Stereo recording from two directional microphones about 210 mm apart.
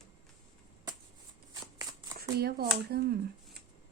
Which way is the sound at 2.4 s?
50° right (ahead or behind).